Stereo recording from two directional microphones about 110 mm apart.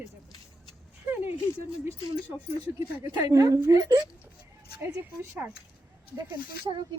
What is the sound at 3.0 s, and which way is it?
A woman's voice, 30° right (ahead or behind).